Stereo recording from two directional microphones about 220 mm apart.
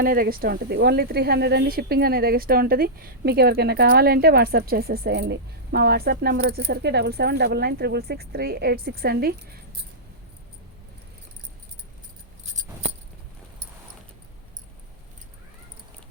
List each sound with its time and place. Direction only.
0.0 s speech: 40° right (ahead or behind)